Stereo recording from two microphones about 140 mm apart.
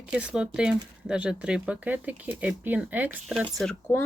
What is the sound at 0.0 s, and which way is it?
Speech, 10° right (ahead or behind).